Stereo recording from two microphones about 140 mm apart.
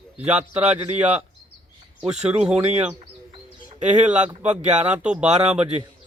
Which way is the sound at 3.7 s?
60° right (ahead or behind).